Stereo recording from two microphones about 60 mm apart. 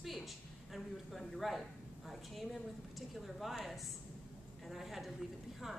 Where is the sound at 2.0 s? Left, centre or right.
Centre.